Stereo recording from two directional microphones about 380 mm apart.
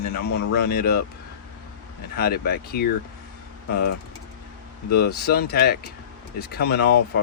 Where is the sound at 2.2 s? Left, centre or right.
Left.